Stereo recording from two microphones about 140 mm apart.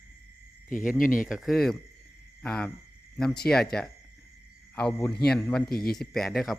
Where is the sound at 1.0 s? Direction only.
75° left (ahead or behind).